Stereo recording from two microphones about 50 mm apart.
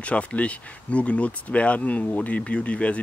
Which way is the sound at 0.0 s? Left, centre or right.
Left.